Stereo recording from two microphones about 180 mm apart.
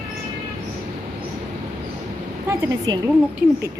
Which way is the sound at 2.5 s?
20° right (ahead or behind).